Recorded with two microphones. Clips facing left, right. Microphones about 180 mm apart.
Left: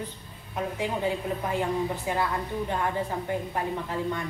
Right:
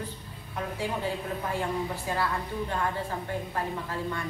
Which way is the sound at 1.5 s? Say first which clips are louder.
Left 3 dB; 20° left (ahead or behind).